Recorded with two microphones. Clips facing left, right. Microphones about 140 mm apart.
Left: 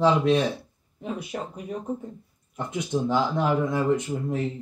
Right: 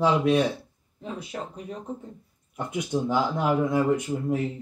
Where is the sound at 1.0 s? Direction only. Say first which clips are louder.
Left 3 dB; 15° left (ahead or behind).